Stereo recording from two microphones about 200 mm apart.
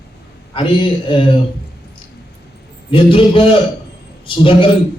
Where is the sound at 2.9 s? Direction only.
25° left (ahead or behind).